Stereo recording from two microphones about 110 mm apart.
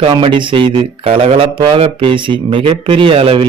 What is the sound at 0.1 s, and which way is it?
A man's voice, 50° right (ahead or behind).